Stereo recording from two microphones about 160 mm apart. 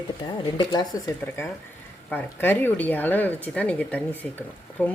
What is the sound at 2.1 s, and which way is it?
Speech, 10° left (ahead or behind).